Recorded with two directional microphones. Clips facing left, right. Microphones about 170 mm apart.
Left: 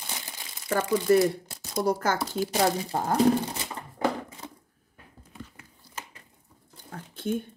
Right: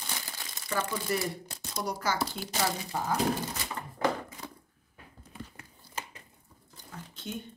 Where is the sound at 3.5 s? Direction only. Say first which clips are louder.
Left 1 dB; 25° left (ahead or behind).